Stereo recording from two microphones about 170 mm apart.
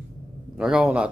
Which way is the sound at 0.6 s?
5° right (ahead or behind).